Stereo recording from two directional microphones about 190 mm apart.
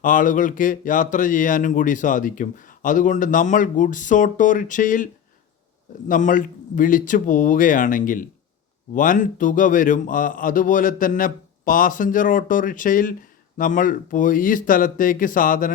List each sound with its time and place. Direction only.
0.0 s speech: 45° left (ahead or behind)
6.1 s speech: 45° left (ahead or behind)